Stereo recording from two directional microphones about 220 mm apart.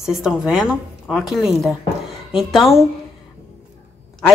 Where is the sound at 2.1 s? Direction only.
Centre (ahead or behind).